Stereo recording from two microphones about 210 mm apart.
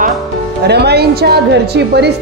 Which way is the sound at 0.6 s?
50° right (ahead or behind).